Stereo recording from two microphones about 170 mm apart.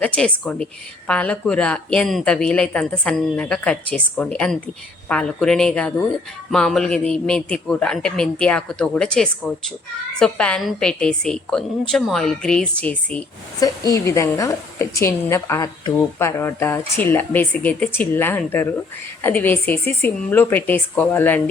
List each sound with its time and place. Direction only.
0.0 s speech: 5° left (ahead or behind)
13.6 s speech: 20° left (ahead or behind)